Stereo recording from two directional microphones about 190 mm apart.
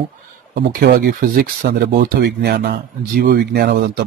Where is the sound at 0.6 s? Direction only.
45° right (ahead or behind).